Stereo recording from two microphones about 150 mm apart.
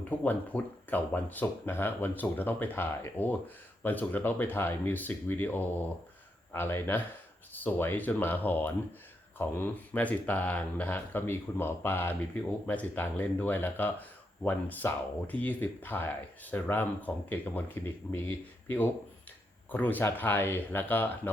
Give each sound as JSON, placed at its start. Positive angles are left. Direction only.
{"t": 0.1, "sound": "speech", "side_deg": 10}